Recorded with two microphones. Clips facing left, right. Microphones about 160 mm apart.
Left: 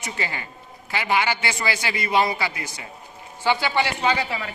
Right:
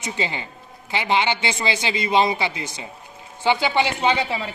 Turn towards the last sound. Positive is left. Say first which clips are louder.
# right 2 dB
turn(degrees=-25)  # may be behind; listen again after turning